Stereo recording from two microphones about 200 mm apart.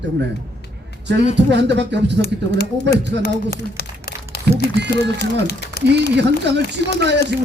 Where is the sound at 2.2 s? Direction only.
55° left (ahead or behind).